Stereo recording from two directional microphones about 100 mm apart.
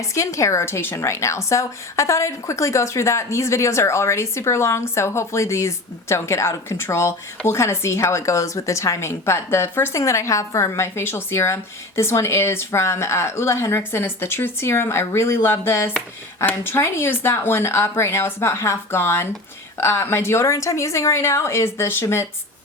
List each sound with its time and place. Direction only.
0.1 s a woman's voice: 30° left (ahead or behind)